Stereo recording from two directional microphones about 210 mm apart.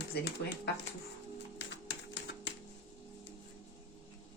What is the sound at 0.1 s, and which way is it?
Speech, 50° left (ahead or behind).